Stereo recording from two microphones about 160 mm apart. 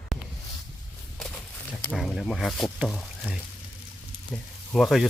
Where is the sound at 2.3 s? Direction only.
Centre (ahead or behind).